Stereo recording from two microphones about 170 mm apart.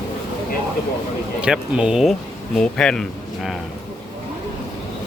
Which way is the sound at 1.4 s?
5° right (ahead or behind).